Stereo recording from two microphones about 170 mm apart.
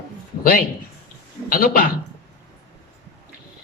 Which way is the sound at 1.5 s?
60° left (ahead or behind).